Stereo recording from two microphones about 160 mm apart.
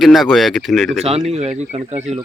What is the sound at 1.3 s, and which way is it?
Speech, 40° right (ahead or behind).